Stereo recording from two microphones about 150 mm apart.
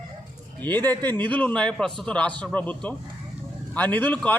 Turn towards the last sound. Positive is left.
turn(degrees=10)  # may be behind; listen again after turning